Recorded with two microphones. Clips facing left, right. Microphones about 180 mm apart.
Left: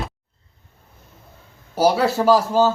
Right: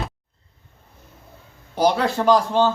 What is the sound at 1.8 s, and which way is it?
Speech, 5° left (ahead or behind).